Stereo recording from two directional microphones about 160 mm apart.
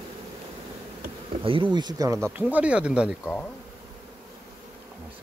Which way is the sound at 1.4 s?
30° right (ahead or behind).